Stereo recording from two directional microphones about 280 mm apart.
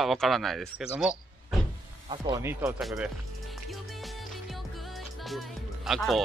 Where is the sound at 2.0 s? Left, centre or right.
Centre.